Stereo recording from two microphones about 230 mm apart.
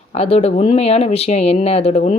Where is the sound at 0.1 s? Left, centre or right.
Left.